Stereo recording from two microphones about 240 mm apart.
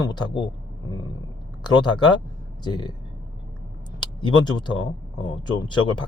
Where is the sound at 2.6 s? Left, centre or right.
Centre.